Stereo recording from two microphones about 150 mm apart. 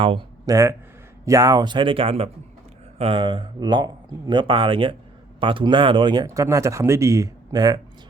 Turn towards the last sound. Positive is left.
turn(degrees=-25)  # may be behind; listen again after turning